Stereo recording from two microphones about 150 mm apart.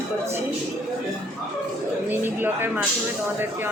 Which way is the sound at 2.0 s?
15° right (ahead or behind).